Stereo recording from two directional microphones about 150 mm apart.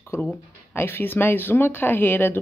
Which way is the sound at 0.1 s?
15° left (ahead or behind).